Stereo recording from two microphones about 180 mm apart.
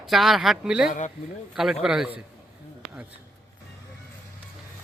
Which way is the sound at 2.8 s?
5° right (ahead or behind).